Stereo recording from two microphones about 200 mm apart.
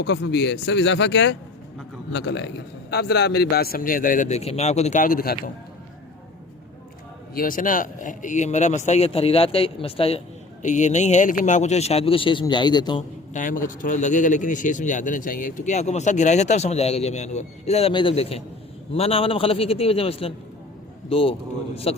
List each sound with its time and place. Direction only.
0.0 s a man's voice: 60° left (ahead or behind)
7.3 s speech: 45° left (ahead or behind); by 13.1 s 20° left (ahead or behind)
13.3 s a man's voice: 45° left (ahead or behind)